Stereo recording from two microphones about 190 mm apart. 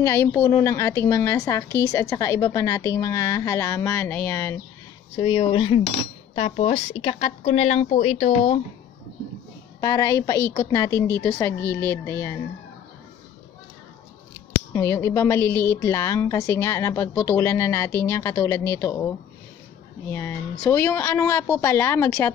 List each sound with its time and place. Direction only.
0.0 s a woman's voice: 15° left (ahead or behind)
5.1 s cutlery: 25° left (ahead or behind)
9.8 s a woman's voice: 20° left (ahead or behind)
14.7 s a woman's voice: 15° left (ahead or behind)